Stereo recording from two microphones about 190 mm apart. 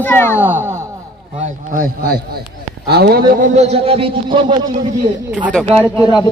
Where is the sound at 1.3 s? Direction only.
45° right (ahead or behind).